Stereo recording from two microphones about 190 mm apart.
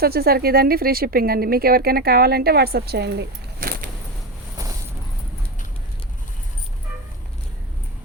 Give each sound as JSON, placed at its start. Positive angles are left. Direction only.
{"t": 0.0, "sound": "a woman's voice", "side_deg": -55}